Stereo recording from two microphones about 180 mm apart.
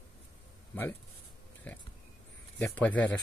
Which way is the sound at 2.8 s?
10° left (ahead or behind).